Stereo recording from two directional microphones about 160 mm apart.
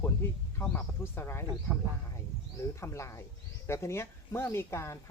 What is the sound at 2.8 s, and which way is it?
Speech, 15° left (ahead or behind).